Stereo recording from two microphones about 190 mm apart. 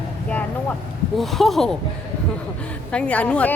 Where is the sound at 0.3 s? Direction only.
5° left (ahead or behind).